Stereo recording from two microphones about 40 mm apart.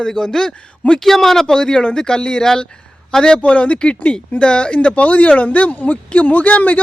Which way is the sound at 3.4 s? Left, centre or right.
Left.